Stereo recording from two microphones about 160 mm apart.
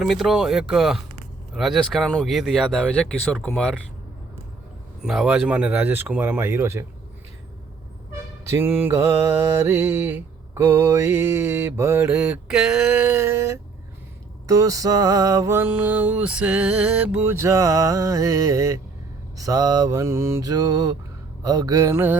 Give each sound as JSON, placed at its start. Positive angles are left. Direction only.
{"t": 0.0, "sound": "speech", "side_deg": 0}
{"t": 5.0, "sound": "mantra", "side_deg": -5}
{"t": 8.4, "sound": "mantra", "side_deg": -15}
{"t": 14.4, "sound": "music", "side_deg": -20}